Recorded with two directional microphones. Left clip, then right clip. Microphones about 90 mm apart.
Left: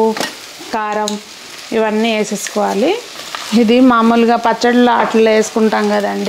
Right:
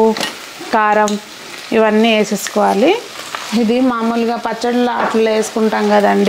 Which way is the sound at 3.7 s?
55° left (ahead or behind).